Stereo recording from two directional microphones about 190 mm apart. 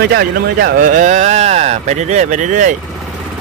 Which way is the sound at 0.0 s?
55° right (ahead or behind).